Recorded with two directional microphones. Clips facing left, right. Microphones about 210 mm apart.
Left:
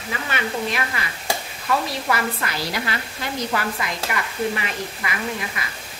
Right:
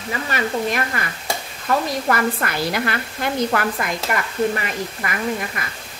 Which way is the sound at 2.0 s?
50° right (ahead or behind).